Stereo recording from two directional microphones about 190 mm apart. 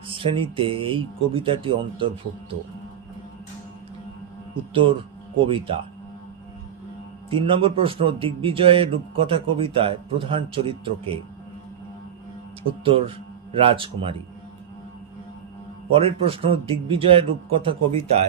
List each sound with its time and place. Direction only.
0.1 s a man's voice: 30° right (ahead or behind)
4.7 s a man's voice: 25° right (ahead or behind)
7.3 s a man's voice: 30° right (ahead or behind)
12.8 s a man's voice: 30° right (ahead or behind)
15.9 s a man's voice: 30° right (ahead or behind)